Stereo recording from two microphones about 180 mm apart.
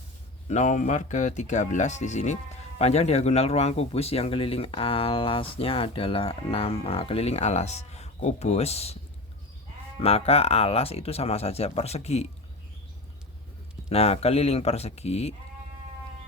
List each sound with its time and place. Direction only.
0.4 s speech: 40° left (ahead or behind)
10.0 s speech: 35° left (ahead or behind)
13.9 s speech: 35° left (ahead or behind)